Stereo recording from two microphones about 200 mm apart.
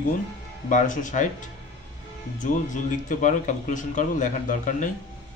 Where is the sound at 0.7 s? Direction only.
40° left (ahead or behind).